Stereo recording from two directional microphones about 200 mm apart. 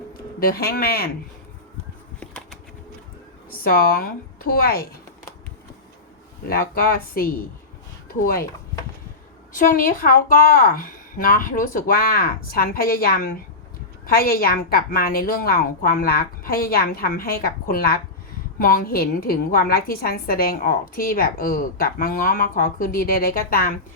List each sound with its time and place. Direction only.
0.1 s speech: 45° left (ahead or behind)
3.5 s a woman's voice: 45° left (ahead or behind)
6.5 s a woman's voice: 45° left (ahead or behind)
9.5 s a woman's voice: 40° left (ahead or behind)